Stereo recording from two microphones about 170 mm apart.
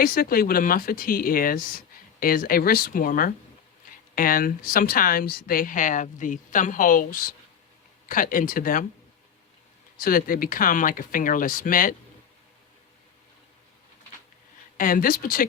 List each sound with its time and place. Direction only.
0.0 s speech: 60° left (ahead or behind)
10.0 s speech: 55° left (ahead or behind)
14.8 s speech: 55° left (ahead or behind)